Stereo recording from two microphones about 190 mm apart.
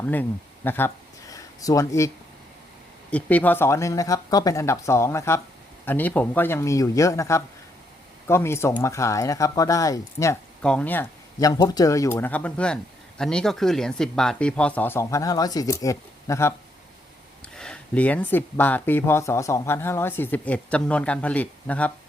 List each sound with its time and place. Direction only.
0.0 s speech: 10° left (ahead or behind)
1.3 s a sound: 15° left (ahead or behind)
3.1 s speech: 5° left (ahead or behind)
10.6 s speech: 5° left (ahead or behind)
17.5 s speech: 5° left (ahead or behind)